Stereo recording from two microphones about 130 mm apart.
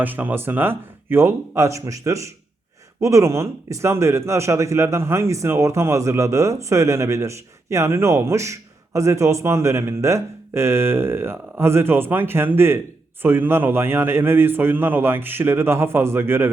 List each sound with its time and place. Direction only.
0.0 s a man's voice: 15° right (ahead or behind)